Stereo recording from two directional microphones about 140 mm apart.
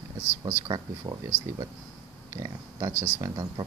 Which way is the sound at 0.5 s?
25° right (ahead or behind).